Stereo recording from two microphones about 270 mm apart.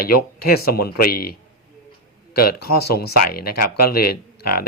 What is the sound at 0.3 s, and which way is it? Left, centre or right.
Speech, left.